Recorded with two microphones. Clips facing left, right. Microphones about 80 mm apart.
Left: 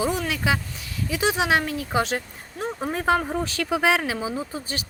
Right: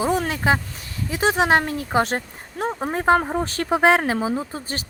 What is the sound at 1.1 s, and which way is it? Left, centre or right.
Speech, right.